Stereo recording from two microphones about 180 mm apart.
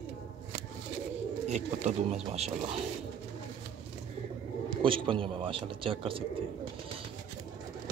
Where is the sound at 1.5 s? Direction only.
40° right (ahead or behind).